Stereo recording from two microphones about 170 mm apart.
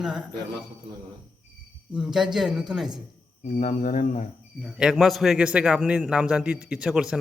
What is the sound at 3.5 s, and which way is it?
Speech, 50° left (ahead or behind).